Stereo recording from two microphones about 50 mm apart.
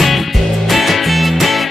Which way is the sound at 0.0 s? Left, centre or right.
Centre.